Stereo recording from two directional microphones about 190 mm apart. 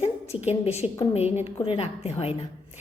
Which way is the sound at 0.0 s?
35° left (ahead or behind).